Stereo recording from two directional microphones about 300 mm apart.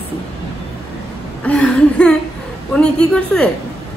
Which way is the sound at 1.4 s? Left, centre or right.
Centre.